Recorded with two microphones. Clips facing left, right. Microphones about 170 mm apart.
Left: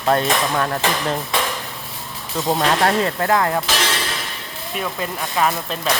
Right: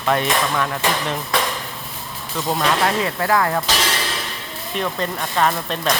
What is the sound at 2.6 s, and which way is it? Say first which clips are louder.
Speech: left 1 dB; 35° left (ahead or behind).